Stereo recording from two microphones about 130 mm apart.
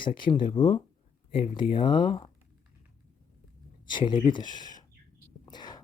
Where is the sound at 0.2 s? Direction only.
40° left (ahead or behind).